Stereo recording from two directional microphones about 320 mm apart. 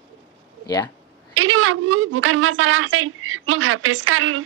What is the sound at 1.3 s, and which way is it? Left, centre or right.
A woman's voice, right.